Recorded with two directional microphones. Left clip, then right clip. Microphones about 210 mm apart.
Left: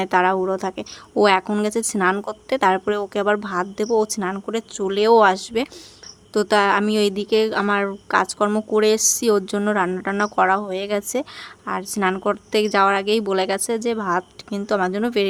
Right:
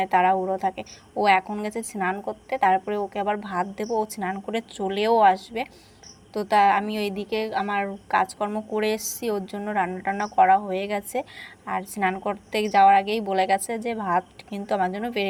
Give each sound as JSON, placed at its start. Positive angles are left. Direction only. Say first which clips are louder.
{"t": 0.0, "sound": "a woman's voice", "louder": "left 2 dB", "side_deg": 20}